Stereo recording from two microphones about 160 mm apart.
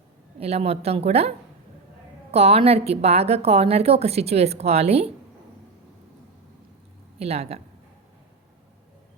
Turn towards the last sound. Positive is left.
turn(degrees=-40)  # may be behind; listen again after turning